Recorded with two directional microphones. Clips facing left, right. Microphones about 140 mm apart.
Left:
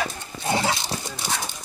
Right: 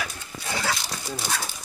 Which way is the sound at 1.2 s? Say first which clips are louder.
Left 1 dB; 15° left (ahead or behind).